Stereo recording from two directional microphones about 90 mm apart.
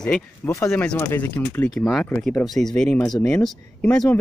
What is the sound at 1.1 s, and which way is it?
Speech, 25° left (ahead or behind).